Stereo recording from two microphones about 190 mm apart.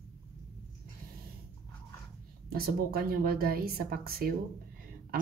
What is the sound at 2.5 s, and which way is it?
A woman's voice, 50° right (ahead or behind).